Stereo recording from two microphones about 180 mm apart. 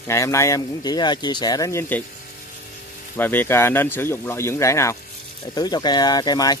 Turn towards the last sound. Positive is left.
turn(degrees=20)  # may be behind; listen again after turning